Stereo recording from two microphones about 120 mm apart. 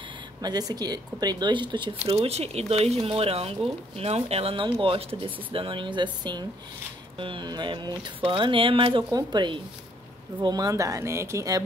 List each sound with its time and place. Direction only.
0.4 s speech: 35° right (ahead or behind)
2.2 s speech: 60° right (ahead or behind); by 11.6 s 25° right (ahead or behind)